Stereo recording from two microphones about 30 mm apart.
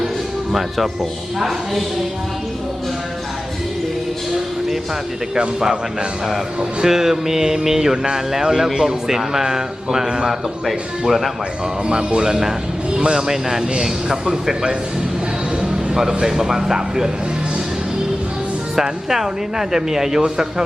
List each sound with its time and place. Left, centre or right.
1.4 s a woman's voice: centre
5.3 s a man's voice: right
6.8 s a man's voice: centre
11.0 s a woman's voice: centre
11.9 s a man's voice: right
13.1 s a man's voice: centre
16.0 s a man's voice: centre
18.8 s a man's voice: centre